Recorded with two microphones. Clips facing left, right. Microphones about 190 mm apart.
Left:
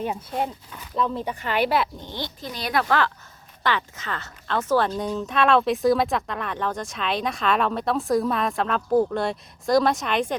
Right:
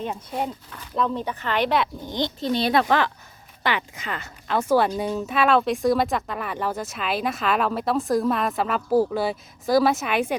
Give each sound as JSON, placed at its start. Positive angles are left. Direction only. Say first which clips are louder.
{"t": 0.0, "sound": "speech", "louder": "left 1 dB", "side_deg": 5}
{"t": 2.0, "sound": "speech", "louder": "right 6 dB", "side_deg": -15}